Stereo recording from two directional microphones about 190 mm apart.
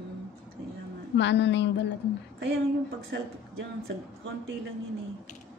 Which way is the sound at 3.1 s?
65° right (ahead or behind).